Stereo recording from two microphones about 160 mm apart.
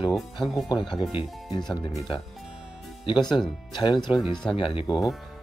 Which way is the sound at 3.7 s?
30° left (ahead or behind).